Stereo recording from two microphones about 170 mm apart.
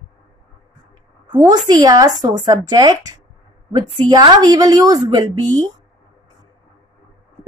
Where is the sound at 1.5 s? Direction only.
25° right (ahead or behind).